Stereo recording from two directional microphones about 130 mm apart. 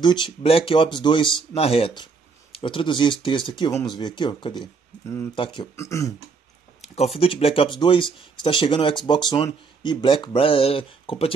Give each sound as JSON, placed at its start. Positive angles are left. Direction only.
{"t": 0.0, "sound": "speech", "side_deg": 35}
{"t": 0.4, "sound": "speech", "side_deg": 50}
{"t": 5.0, "sound": "speech", "side_deg": 20}
{"t": 5.3, "sound": "speech", "side_deg": 40}
{"t": 5.8, "sound": "speech", "side_deg": 20}
{"t": 6.8, "sound": "speech", "side_deg": 50}